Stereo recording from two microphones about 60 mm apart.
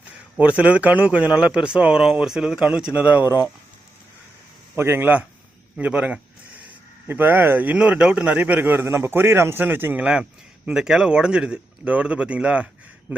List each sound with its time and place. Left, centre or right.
0.3 s a man's voice: right
4.8 s speech: right
5.7 s a man's voice: right
7.1 s speech: right
7.8 s a man's voice: centre
8.8 s a man's voice: right
10.0 s a man's voice: centre
10.7 s a man's voice: centre